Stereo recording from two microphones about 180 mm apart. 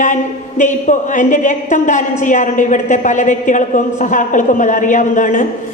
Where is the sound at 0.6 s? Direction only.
45° left (ahead or behind).